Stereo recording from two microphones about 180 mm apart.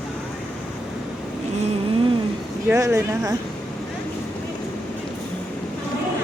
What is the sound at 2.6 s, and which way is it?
Speech, 15° right (ahead or behind).